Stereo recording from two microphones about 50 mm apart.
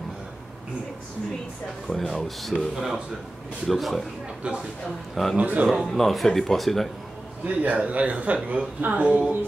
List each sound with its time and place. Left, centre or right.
1.9 s speech: centre
4.4 s speech: right
5.1 s speech: centre
5.4 s a man's voice: right
5.7 s speech: centre
7.4 s a man's voice: right